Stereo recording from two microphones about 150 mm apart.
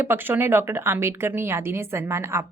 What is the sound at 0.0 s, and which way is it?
A woman's voice, 15° right (ahead or behind).